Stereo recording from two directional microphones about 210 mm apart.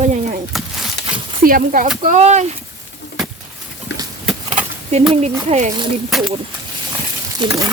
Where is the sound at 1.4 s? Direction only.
40° right (ahead or behind).